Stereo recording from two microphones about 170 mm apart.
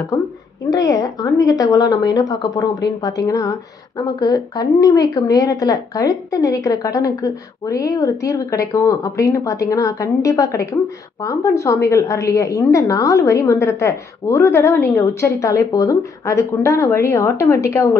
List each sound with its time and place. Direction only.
0.7 s a woman's voice: 20° left (ahead or behind)